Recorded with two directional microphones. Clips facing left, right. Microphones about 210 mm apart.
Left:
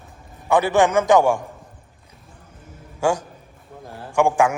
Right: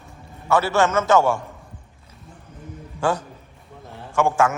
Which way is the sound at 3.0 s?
10° left (ahead or behind).